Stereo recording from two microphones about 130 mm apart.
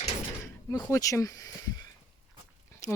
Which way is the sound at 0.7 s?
25° left (ahead or behind).